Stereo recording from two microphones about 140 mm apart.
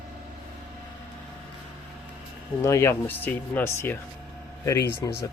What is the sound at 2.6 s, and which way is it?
Speech, 20° left (ahead or behind).